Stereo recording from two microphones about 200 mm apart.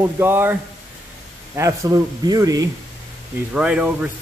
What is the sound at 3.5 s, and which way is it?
Speech, 5° right (ahead or behind).